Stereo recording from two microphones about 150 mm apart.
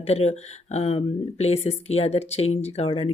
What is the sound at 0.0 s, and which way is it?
Speech, 45° left (ahead or behind).